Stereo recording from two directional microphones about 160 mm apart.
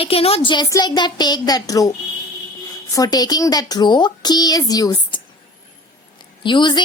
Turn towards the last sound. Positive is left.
turn(degrees=30)  # may be behind; listen again after turning